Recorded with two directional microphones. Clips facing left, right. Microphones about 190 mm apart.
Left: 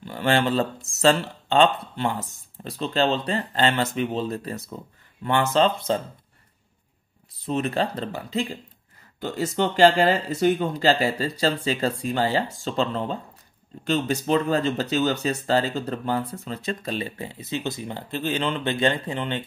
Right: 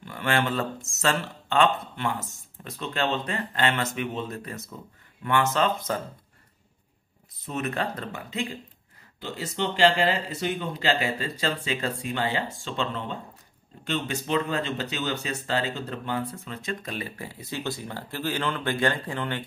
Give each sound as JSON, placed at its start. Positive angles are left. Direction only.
{"t": 0.0, "sound": "speech", "side_deg": 30}
{"t": 7.3, "sound": "speech", "side_deg": 30}